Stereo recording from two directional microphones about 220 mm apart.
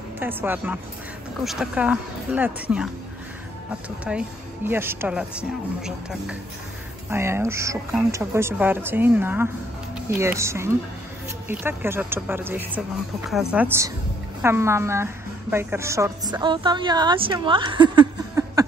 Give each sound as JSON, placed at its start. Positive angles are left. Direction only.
{"t": 0.2, "sound": "a woman's voice", "side_deg": -10}
{"t": 4.0, "sound": "a woman's voice", "side_deg": -5}